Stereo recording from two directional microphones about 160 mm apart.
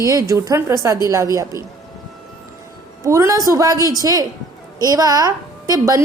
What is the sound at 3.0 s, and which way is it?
A woman's voice, 20° right (ahead or behind).